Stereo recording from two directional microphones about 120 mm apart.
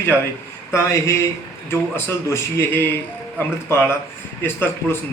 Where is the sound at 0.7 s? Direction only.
25° left (ahead or behind).